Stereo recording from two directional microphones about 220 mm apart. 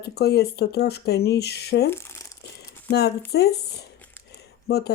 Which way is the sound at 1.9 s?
10° left (ahead or behind).